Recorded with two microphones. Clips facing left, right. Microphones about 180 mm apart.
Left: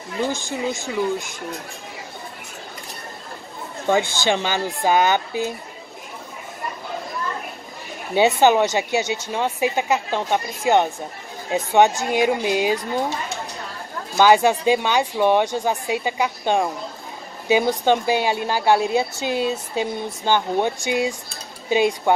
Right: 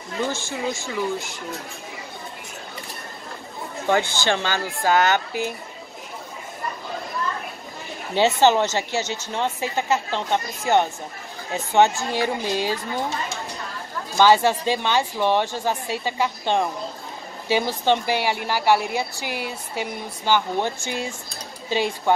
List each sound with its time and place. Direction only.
0.2 s speech: 15° left (ahead or behind)
4.2 s speech: 15° left (ahead or behind)
8.1 s speech: 15° left (ahead or behind)
14.1 s speech: 15° left (ahead or behind)